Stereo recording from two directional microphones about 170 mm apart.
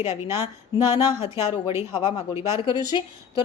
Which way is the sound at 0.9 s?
30° left (ahead or behind).